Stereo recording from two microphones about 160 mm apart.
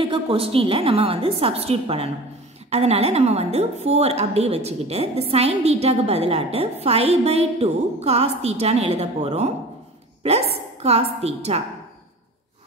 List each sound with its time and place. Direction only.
0.0 s a woman's voice: 35° right (ahead or behind)